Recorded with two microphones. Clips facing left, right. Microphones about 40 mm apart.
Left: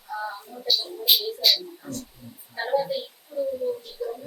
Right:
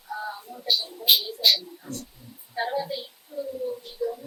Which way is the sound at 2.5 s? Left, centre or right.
Centre.